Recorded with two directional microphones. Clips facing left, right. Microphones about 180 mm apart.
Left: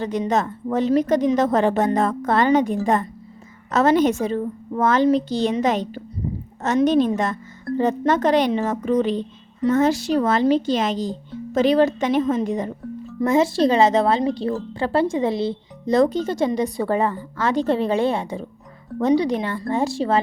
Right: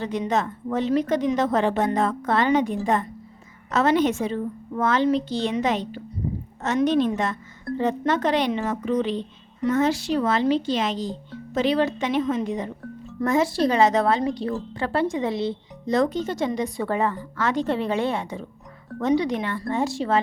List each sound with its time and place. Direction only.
0.0 s a woman's voice: 40° left (ahead or behind)
13.2 s speech: 25° left (ahead or behind)